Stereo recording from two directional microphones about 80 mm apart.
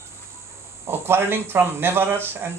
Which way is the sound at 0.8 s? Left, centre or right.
Right.